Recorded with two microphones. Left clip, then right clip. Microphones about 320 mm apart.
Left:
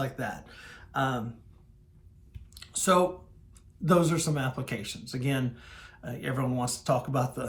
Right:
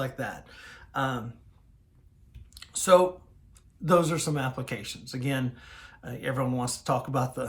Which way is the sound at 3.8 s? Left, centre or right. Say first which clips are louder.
Right 2 dB; centre.